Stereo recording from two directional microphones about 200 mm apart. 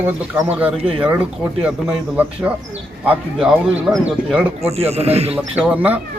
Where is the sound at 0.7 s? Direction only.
30° right (ahead or behind).